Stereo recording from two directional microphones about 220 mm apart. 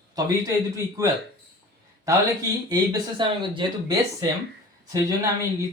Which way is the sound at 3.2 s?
20° right (ahead or behind).